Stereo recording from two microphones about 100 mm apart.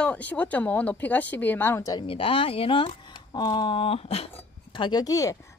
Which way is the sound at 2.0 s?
65° left (ahead or behind).